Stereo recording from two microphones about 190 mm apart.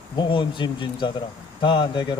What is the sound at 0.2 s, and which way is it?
Speech, 25° left (ahead or behind).